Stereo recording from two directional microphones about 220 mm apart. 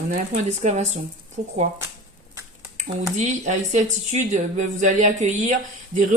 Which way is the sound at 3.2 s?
30° right (ahead or behind).